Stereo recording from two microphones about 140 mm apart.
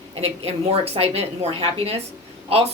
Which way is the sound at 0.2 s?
45° right (ahead or behind).